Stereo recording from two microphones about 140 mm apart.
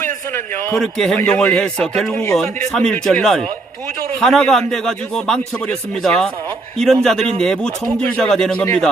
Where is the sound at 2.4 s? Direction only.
5° left (ahead or behind).